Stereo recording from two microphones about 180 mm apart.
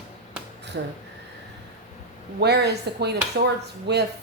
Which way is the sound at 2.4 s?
65° right (ahead or behind).